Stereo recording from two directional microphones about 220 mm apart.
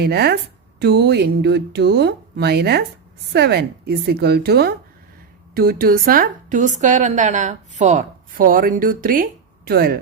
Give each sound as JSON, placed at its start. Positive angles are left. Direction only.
{"t": 0.0, "sound": "a woman's voice", "side_deg": -45}